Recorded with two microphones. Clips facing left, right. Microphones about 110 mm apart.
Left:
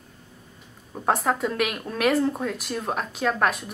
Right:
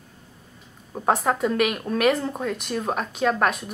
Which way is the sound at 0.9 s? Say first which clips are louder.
Right 1 dB; 5° right (ahead or behind).